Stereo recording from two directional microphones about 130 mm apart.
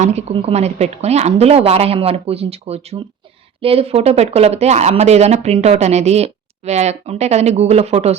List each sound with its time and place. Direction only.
0.0 s a woman's voice: 55° right (ahead or behind)